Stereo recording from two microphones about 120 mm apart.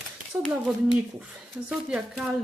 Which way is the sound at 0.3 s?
25° right (ahead or behind).